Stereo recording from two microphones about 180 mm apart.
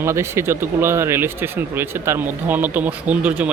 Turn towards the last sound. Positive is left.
turn(degrees=-5)  # may be behind; listen again after turning